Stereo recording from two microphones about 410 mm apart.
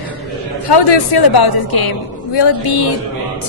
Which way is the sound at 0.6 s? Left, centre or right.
Left.